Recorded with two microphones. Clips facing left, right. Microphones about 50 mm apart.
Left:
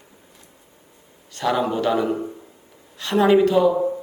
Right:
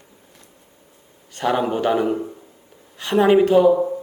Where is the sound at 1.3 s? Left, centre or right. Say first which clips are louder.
Right 1 dB; right.